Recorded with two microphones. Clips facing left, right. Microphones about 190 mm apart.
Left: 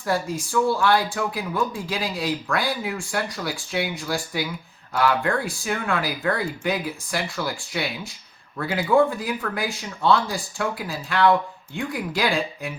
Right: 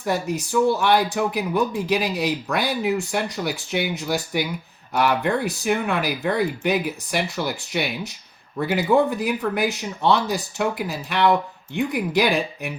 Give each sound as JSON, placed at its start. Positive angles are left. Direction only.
{"t": 0.0, "sound": "speech", "side_deg": -20}